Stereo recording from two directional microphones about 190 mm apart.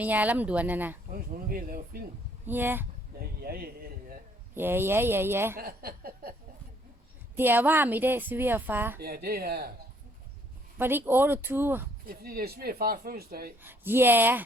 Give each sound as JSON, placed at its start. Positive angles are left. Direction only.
{"t": 0.0, "sound": "speech", "side_deg": -10}
{"t": 1.1, "sound": "speech", "side_deg": -50}
{"t": 2.5, "sound": "speech", "side_deg": -10}
{"t": 3.2, "sound": "a sound", "side_deg": -50}
{"t": 4.5, "sound": "speech", "side_deg": -10}
{"t": 5.5, "sound": "speech", "side_deg": -50}
{"t": 7.3, "sound": "speech", "side_deg": -10}
{"t": 9.0, "sound": "speech", "side_deg": -55}
{"t": 10.8, "sound": "speech", "side_deg": -10}
{"t": 12.0, "sound": "speech", "side_deg": -55}
{"t": 13.6, "sound": "speech", "side_deg": -10}